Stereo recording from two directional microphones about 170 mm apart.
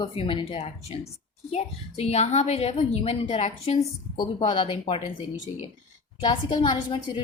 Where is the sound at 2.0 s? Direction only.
40° left (ahead or behind).